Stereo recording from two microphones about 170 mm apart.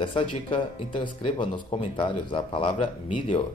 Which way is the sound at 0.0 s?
30° left (ahead or behind).